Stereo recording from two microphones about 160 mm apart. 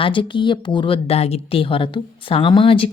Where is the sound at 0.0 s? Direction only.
30° left (ahead or behind).